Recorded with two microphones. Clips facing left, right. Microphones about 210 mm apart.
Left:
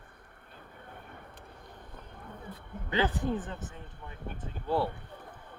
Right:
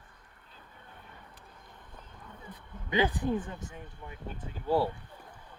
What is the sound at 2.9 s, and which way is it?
Speech, 15° right (ahead or behind).